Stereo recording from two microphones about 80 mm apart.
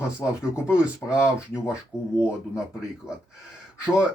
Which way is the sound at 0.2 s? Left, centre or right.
Left.